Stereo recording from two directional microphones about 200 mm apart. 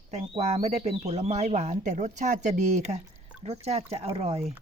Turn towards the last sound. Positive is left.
turn(degrees=-30)  # may be behind; listen again after turning